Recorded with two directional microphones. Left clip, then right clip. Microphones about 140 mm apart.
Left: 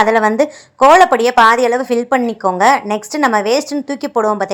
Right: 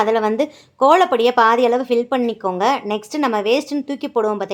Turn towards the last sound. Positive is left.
turn(degrees=35)  # may be behind; listen again after turning